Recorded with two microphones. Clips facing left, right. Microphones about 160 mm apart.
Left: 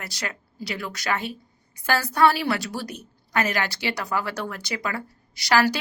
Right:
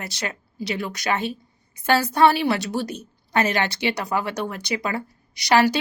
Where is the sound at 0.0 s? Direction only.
25° right (ahead or behind).